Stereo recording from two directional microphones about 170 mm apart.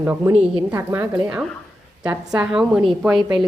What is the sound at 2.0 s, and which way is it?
Speech, 20° right (ahead or behind).